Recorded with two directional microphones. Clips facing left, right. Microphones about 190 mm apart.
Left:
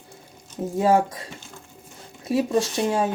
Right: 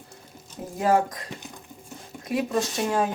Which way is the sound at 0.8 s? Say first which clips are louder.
Left 2 dB; 25° left (ahead or behind).